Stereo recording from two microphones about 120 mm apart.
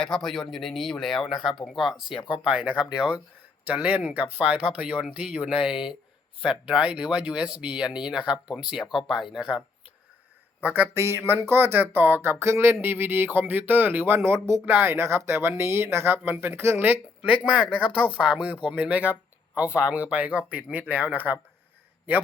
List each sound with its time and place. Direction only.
0.0 s speech: centre (ahead or behind)
10.6 s speech: 15° right (ahead or behind)